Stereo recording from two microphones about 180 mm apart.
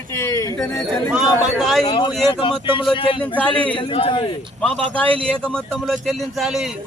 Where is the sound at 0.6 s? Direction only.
Centre (ahead or behind).